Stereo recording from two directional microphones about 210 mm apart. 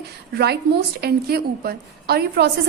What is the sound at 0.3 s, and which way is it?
A woman's voice, 50° right (ahead or behind).